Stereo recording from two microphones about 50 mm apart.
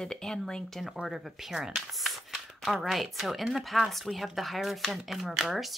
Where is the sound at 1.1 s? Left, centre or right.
Centre.